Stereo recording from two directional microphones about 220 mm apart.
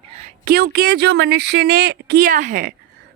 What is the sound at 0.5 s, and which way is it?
Speech, 45° right (ahead or behind).